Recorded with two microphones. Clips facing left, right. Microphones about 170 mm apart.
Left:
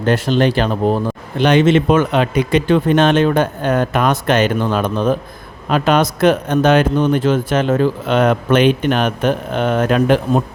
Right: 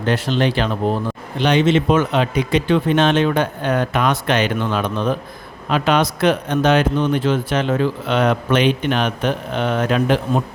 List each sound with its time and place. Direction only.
0.0 s speech: 45° left (ahead or behind)